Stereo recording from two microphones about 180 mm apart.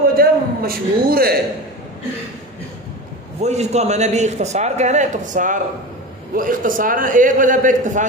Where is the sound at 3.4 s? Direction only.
40° right (ahead or behind).